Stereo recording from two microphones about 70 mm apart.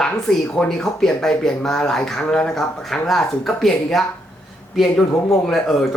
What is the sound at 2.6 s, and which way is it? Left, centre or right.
Speech, centre.